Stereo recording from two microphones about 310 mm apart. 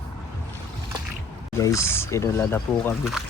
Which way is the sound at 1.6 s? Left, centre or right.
Centre.